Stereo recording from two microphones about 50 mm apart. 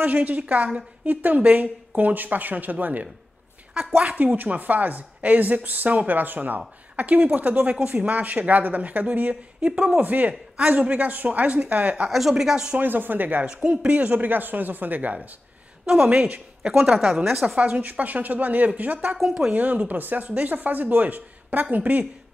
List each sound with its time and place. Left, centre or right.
0.0 s speech: right
4.2 s speech: right
9.6 s a woman's voice: centre
9.9 s speech: right
12.1 s speech: centre
12.7 s speech: right
13.5 s a woman's voice: right
16.9 s a woman's voice: centre
17.6 s speech: right